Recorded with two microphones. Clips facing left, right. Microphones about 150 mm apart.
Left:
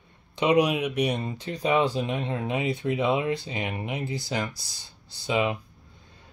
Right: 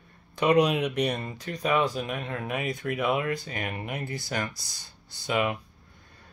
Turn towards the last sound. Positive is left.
turn(degrees=15)  # may be behind; listen again after turning